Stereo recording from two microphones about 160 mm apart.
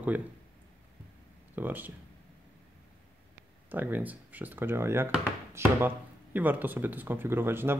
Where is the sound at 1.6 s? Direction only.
10° right (ahead or behind).